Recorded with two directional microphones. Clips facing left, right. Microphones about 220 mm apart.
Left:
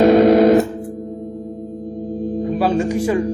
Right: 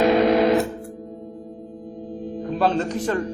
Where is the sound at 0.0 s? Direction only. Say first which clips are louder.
Left 6 dB; 45° left (ahead or behind).